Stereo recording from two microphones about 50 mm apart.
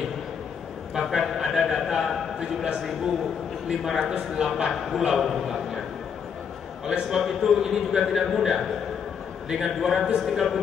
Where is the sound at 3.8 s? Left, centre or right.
Centre.